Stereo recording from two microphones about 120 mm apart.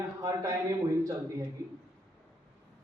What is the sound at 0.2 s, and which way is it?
Speech, 30° right (ahead or behind).